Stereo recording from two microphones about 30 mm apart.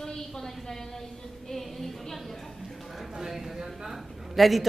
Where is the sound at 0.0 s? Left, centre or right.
Centre.